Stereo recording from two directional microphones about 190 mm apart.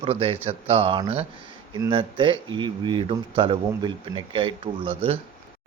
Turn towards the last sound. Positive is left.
turn(degrees=-30)  # may be behind; listen again after turning